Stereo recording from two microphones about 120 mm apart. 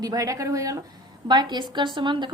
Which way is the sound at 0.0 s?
30° right (ahead or behind).